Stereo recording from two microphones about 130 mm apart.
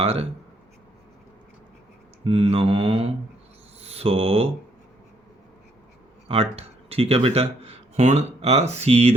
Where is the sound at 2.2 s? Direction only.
50° right (ahead or behind).